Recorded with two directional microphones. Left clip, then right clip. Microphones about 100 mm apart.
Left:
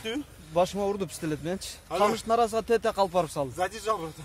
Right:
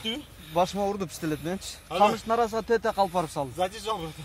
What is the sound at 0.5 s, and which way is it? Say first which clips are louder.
Speech: even; 30° left (ahead or behind).